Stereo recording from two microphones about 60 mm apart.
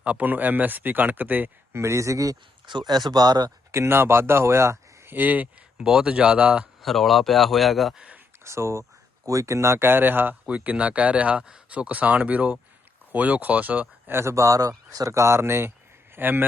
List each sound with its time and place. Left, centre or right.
0.0 s speech: right
1.7 s speech: right
3.7 s speech: right
5.1 s speech: right
5.8 s speech: centre
6.8 s speech: centre
7.9 s speech: centre
8.4 s speech: right
9.2 s speech: right
10.4 s speech: right
14.1 s speech: right